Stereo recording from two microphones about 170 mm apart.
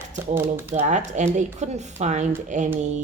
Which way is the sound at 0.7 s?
45° right (ahead or behind).